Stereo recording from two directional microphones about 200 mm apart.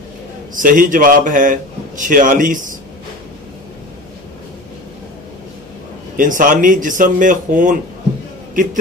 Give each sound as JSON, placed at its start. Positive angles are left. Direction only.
{"t": 0.6, "sound": "a man's voice", "side_deg": -45}
{"t": 6.1, "sound": "a man's voice", "side_deg": -40}